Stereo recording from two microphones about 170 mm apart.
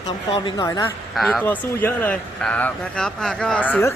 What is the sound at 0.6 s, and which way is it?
Speech, 20° left (ahead or behind).